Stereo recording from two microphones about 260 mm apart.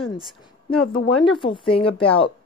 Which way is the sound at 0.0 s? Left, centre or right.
Centre.